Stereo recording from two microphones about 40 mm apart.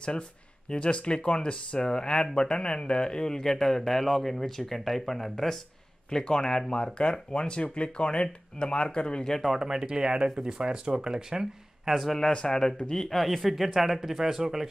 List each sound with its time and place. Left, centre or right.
0.7 s a man's voice: left; by 5.6 s centre
6.0 s speech: centre
9.6 s speech: centre
11.9 s speech: centre
12.2 s a man's voice: centre